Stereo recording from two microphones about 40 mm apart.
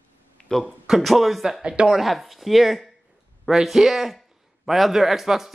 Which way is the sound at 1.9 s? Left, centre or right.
Centre.